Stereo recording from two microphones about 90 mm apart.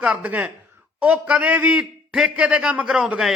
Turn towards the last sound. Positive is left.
turn(degrees=-5)  # may be behind; listen again after turning